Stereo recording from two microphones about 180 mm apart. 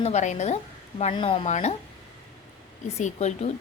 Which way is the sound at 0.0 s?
40° left (ahead or behind).